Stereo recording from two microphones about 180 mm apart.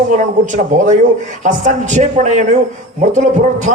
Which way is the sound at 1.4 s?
45° right (ahead or behind).